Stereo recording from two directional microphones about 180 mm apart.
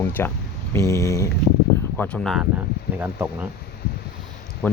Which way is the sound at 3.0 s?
10° right (ahead or behind).